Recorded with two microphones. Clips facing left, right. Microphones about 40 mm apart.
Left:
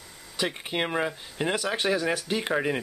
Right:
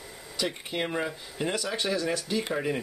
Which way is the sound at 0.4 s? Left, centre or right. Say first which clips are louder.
Left 2 dB; left.